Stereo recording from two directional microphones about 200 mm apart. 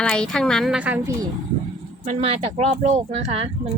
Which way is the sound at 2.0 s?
35° right (ahead or behind).